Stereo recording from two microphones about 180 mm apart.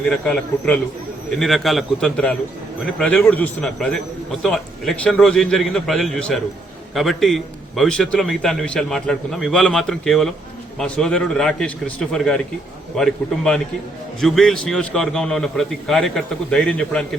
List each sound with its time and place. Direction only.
0.0 s a man's voice: 5° left (ahead or behind)